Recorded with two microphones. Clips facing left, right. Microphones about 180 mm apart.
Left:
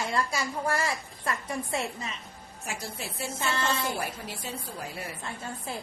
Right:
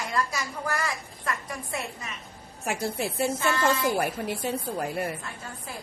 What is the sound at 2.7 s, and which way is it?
A woman's voice, 60° right (ahead or behind).